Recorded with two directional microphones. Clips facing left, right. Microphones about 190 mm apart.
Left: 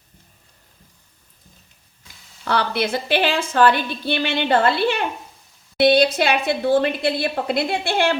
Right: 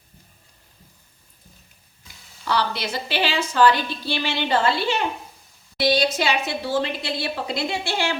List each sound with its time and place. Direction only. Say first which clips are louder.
2.4 s a woman's voice: left 3 dB; 55° left (ahead or behind)